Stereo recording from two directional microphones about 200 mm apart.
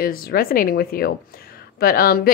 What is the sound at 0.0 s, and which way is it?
A woman's voice, 50° left (ahead or behind).